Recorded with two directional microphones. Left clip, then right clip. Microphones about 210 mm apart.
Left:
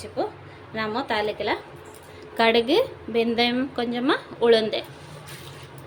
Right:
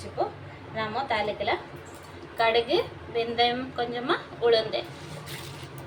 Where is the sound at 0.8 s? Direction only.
50° left (ahead or behind).